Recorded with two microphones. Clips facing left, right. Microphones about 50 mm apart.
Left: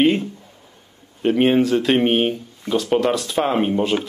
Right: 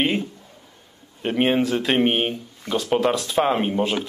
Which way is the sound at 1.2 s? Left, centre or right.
Centre.